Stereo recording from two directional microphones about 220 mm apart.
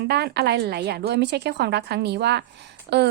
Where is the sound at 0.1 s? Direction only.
50° right (ahead or behind).